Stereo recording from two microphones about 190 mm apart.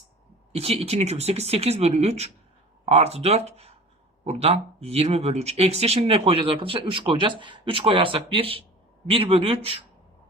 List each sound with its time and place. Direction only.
0.5 s speech: 30° right (ahead or behind)